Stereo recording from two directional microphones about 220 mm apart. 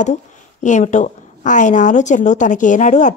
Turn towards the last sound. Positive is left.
turn(degrees=35)  # may be behind; listen again after turning